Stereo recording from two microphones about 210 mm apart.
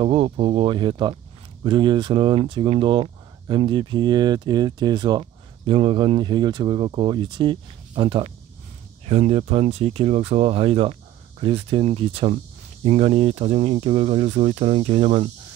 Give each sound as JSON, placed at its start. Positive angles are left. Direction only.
{"t": 0.0, "sound": "speech", "side_deg": -25}